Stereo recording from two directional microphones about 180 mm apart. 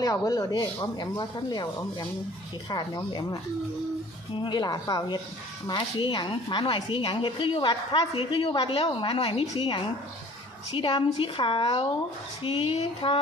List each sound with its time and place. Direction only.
0.0 s a woman's voice: 20° left (ahead or behind)
4.4 s a woman's voice: 25° left (ahead or behind)